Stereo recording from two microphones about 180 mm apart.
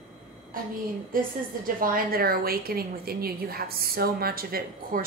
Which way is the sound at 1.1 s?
50° right (ahead or behind).